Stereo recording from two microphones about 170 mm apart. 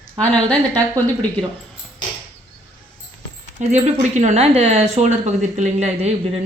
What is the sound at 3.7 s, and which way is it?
Speech, 45° right (ahead or behind).